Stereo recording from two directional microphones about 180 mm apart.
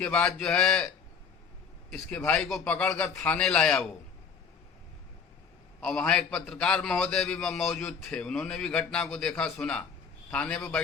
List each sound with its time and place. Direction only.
0.0 s a man's voice: 5° left (ahead or behind)
1.9 s a man's voice: 5° left (ahead or behind)
5.8 s a man's voice: 5° left (ahead or behind)